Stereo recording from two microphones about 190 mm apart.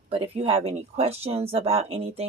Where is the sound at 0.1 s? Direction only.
30° right (ahead or behind).